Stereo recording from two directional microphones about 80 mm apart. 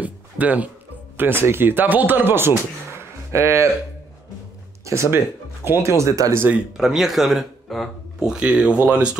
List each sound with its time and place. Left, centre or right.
0.0 s music: centre
1.1 s speech: right
4.8 s speech: right
6.8 s speech: centre